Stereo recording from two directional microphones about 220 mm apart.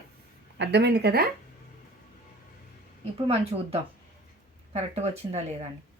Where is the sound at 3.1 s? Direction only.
25° right (ahead or behind).